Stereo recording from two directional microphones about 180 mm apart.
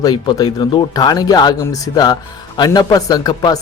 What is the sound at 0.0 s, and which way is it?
Speech, 20° left (ahead or behind).